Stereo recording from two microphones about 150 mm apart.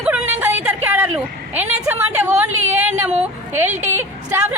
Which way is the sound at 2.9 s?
50° right (ahead or behind).